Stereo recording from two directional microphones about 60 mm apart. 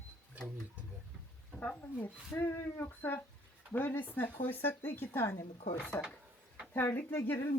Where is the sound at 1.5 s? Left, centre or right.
Left.